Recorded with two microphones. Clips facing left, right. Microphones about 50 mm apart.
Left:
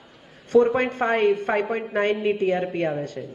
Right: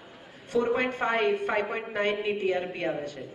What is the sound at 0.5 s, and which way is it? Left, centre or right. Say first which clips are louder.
Speech: left 10 dB; left.